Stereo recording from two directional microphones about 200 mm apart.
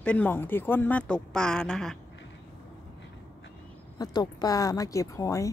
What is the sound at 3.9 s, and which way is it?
A woman's voice, 20° left (ahead or behind).